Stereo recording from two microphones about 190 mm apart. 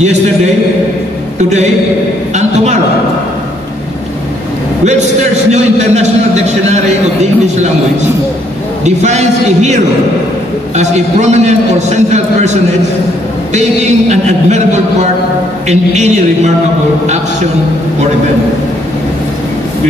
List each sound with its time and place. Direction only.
1.4 s a man's voice: 35° right (ahead or behind)
2.3 s a sound: 40° right (ahead or behind)
5.5 s a man's voice: 35° right (ahead or behind)
8.8 s a man's voice: 35° right (ahead or behind)
10.8 s a man's voice: 35° right (ahead or behind)